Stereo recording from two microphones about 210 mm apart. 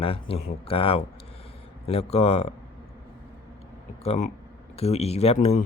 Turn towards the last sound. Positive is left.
turn(degrees=30)  # may be behind; listen again after turning